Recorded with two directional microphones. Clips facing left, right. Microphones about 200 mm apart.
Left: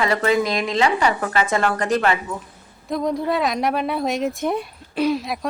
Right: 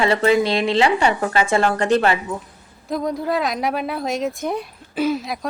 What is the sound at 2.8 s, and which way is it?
Speech, centre (ahead or behind).